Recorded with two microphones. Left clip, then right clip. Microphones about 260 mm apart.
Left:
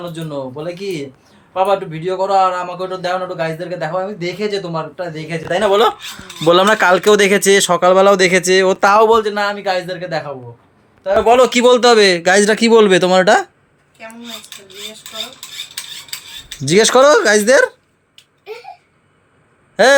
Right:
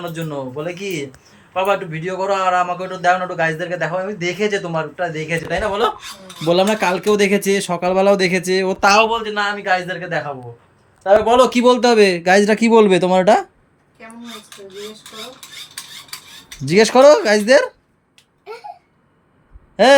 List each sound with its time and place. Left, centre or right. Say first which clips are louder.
0.1 s a man's voice: left 1 dB; centre
5.5 s speech: left 7 dB; left
6.5 s a man's voice: left 5 dB; centre
11.3 s a man's voice: left 3 dB; centre
16.6 s a man's voice: even; centre
19.7 s speech: left 1 dB; centre